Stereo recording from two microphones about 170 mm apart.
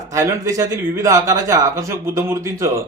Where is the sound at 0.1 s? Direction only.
20° right (ahead or behind).